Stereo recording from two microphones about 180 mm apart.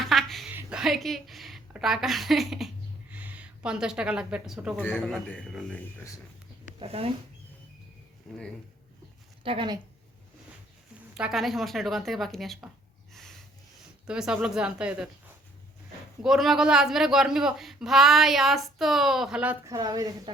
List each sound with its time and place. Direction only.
0.0 s a sound: centre (ahead or behind)
0.5 s a woman's voice: 5° right (ahead or behind)
4.8 s speech: 10° left (ahead or behind)
6.7 s speech: 35° right (ahead or behind)
8.3 s speech: centre (ahead or behind)
9.4 s speech: 30° right (ahead or behind)
11.1 s speech: 5° right (ahead or behind)
14.1 s speech: 5° right (ahead or behind)
16.2 s speech: centre (ahead or behind)
19.7 s a woman's voice: 20° right (ahead or behind)